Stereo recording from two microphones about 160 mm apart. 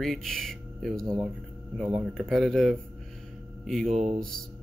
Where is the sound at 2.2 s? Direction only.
5° left (ahead or behind).